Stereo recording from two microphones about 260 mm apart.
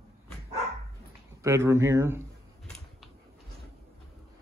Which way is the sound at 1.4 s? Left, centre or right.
Centre.